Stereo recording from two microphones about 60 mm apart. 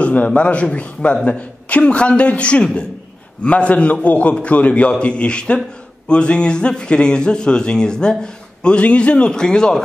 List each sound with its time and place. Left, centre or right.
0.0 s a man's voice: left